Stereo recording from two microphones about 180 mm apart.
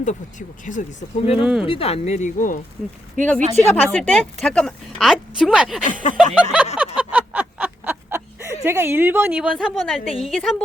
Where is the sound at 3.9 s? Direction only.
5° left (ahead or behind).